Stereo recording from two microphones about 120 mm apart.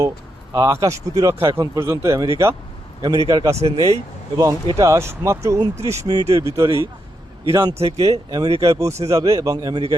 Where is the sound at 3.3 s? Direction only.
35° right (ahead or behind).